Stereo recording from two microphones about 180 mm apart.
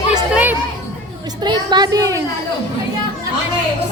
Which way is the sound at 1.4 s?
25° right (ahead or behind).